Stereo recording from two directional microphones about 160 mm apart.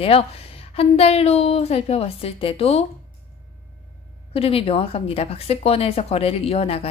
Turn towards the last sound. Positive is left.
turn(degrees=40)  # may be behind; listen again after turning